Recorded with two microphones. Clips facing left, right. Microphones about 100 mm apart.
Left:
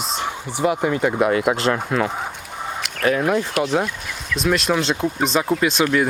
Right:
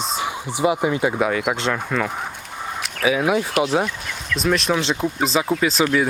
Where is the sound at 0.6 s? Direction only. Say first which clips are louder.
Even; 5° right (ahead or behind).